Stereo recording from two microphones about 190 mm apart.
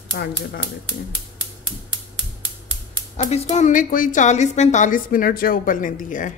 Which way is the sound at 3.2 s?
35° left (ahead or behind).